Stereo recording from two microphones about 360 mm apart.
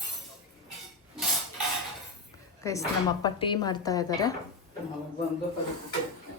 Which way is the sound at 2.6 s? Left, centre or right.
Centre.